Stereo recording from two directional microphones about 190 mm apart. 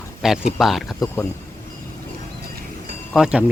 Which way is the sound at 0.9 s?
15° left (ahead or behind).